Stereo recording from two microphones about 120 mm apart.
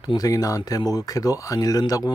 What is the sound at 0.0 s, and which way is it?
Speech, 30° left (ahead or behind).